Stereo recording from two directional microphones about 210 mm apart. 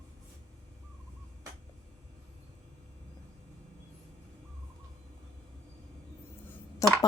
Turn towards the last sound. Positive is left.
turn(degrees=15)  # may be behind; listen again after turning